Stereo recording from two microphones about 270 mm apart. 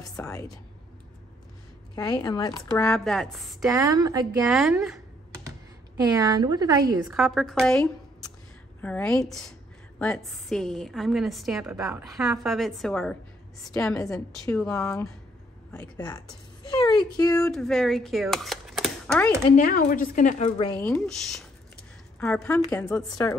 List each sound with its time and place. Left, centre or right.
0.1 s speech: centre
2.0 s speech: centre
2.9 s a woman's voice: centre
3.7 s a woman's voice: centre
4.5 s computer keyboard: centre
6.0 s a woman's voice: centre
7.1 s a woman's voice: centre
16.7 s speech: centre
17.4 s speech: centre
19.5 s a woman's voice: left
20.8 s a woman's voice: centre